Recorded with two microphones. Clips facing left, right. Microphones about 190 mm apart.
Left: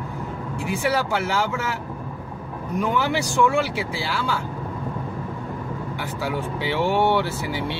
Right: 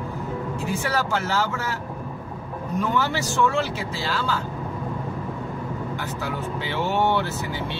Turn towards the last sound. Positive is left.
turn(degrees=15)  # may be behind; listen again after turning